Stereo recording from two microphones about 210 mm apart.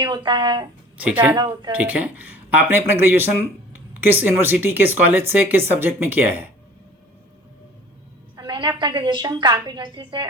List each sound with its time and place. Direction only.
0.0 s a woman's voice: 20° right (ahead or behind)
0.9 s speech: 5° right (ahead or behind)
1.4 s a woman's voice: 20° right (ahead or behind)
1.7 s speech: 5° right (ahead or behind)
8.4 s a woman's voice: 20° right (ahead or behind)